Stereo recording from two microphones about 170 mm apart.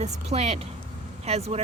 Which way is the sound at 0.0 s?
40° right (ahead or behind).